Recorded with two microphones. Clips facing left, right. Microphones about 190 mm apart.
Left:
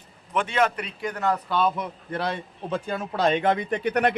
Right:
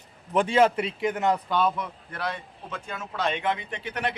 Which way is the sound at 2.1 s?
30° left (ahead or behind).